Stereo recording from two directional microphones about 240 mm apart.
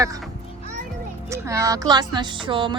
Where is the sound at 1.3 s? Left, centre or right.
Centre.